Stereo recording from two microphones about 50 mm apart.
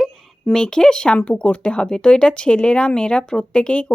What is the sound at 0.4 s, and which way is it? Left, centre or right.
Speech, centre.